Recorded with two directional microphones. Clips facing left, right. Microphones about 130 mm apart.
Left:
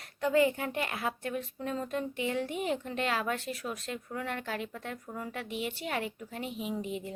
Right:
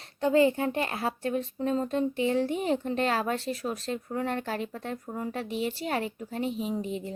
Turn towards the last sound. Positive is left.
turn(degrees=-35)  # may be behind; listen again after turning